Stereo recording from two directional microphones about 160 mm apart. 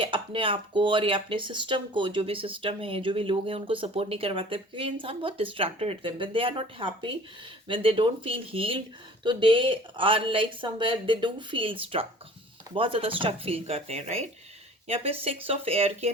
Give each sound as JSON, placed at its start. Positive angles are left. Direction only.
{"t": 0.0, "sound": "speech", "side_deg": -35}